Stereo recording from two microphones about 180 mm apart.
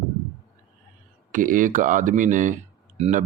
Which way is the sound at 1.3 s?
45° right (ahead or behind).